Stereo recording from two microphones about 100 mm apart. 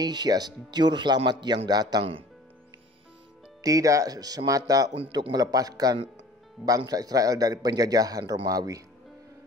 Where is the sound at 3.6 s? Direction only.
35° right (ahead or behind).